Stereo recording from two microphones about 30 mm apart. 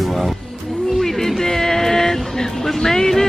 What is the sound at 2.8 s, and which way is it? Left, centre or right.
Speech, centre.